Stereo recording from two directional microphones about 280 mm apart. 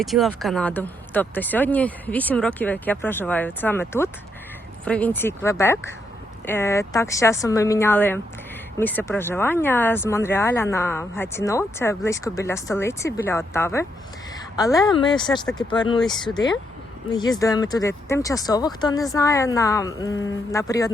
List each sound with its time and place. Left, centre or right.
0.0 s a woman's voice: centre
17.1 s speech: centre